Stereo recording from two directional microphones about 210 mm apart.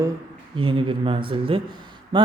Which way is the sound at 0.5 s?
25° right (ahead or behind).